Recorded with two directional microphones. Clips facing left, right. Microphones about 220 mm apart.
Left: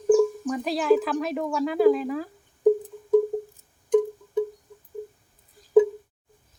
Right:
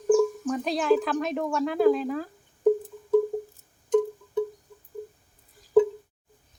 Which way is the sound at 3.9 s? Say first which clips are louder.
Left 2 dB; 15° left (ahead or behind).